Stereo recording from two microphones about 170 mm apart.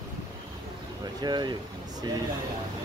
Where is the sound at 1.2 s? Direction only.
25° right (ahead or behind).